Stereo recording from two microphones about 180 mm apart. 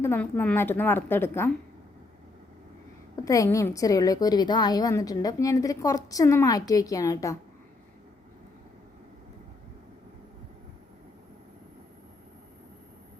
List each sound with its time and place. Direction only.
0.0 s a woman's voice: 10° left (ahead or behind)
3.2 s a woman's voice: 20° left (ahead or behind)